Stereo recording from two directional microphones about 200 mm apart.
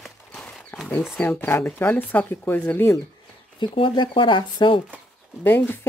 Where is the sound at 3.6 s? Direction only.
25° left (ahead or behind).